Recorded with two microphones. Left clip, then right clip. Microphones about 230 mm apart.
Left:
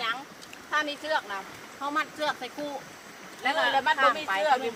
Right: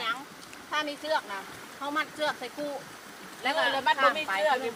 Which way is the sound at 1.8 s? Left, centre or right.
Centre.